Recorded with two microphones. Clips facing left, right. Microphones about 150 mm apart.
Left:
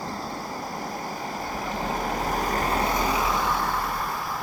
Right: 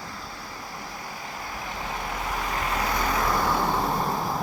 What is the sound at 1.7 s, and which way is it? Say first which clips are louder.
Vehicle: left 5 dB; 40° left (ahead or behind).